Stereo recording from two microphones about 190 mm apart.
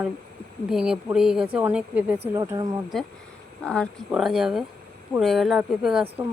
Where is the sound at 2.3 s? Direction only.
20° right (ahead or behind).